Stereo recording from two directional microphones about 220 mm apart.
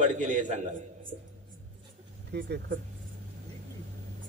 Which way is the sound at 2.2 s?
50° right (ahead or behind).